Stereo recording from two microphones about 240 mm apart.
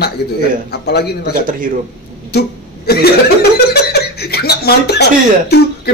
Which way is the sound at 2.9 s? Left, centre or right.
Left.